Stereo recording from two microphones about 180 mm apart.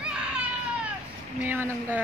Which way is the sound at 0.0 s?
5° right (ahead or behind).